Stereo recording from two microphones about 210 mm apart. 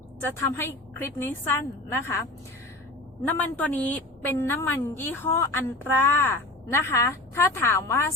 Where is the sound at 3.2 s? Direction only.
10° left (ahead or behind).